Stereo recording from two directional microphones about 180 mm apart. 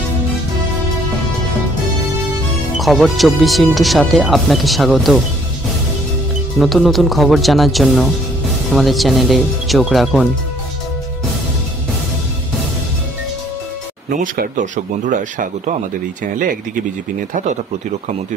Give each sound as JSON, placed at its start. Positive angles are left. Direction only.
{"t": 2.8, "sound": "speech", "side_deg": 0}
{"t": 6.6, "sound": "speech", "side_deg": 0}
{"t": 14.1, "sound": "speech", "side_deg": -50}